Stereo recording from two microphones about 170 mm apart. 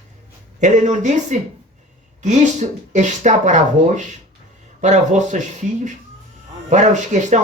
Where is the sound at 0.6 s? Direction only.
45° right (ahead or behind).